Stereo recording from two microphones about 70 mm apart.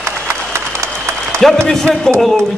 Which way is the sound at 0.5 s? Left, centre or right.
Right.